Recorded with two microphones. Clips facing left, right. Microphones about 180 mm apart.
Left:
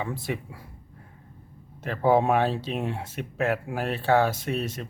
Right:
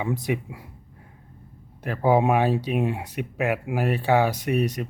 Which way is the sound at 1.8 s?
10° right (ahead or behind).